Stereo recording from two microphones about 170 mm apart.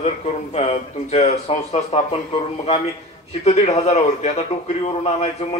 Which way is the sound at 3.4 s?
40° left (ahead or behind).